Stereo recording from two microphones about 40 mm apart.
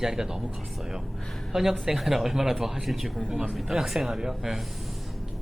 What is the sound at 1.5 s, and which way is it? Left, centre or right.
Speech, centre.